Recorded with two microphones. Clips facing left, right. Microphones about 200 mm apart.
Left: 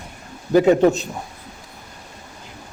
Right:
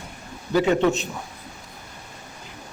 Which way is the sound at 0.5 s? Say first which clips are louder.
Left 5 dB; 40° left (ahead or behind).